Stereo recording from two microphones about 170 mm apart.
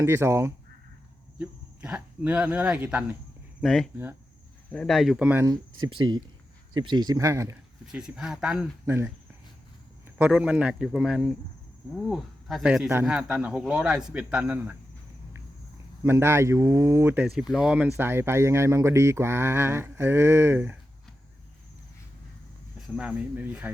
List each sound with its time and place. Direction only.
0.0 s speech: 15° right (ahead or behind)
5.8 s speech: 30° right (ahead or behind)
7.9 s speech: 5° right (ahead or behind)
10.2 s speech: 5° right (ahead or behind)
16.0 s speech: 15° right (ahead or behind)
23.0 s speech: 10° right (ahead or behind)